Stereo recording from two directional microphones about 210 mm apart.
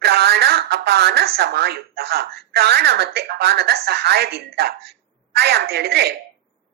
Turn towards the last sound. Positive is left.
turn(degrees=-50)  # may be behind; listen again after turning